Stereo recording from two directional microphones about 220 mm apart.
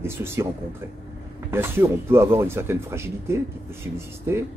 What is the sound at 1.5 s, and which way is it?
Speech, 10° right (ahead or behind).